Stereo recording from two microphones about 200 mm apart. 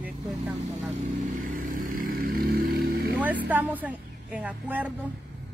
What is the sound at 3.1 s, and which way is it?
A woman's voice, 10° right (ahead or behind).